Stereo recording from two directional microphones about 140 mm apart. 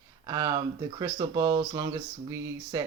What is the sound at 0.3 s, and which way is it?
Speech, 25° right (ahead or behind).